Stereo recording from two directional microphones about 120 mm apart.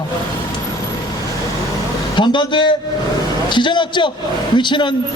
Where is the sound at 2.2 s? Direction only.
40° left (ahead or behind).